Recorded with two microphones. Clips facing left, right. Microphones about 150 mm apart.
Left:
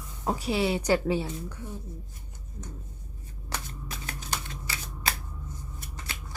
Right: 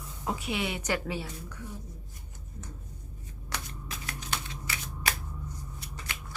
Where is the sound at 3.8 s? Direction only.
35° left (ahead or behind).